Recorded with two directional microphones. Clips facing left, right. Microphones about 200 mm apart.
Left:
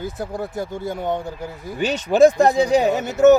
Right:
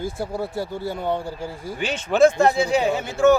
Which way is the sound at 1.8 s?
40° left (ahead or behind).